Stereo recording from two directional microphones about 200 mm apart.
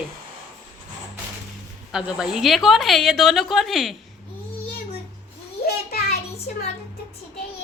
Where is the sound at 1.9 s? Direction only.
5° right (ahead or behind).